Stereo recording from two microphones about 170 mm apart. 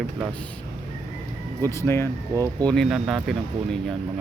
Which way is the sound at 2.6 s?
5° left (ahead or behind).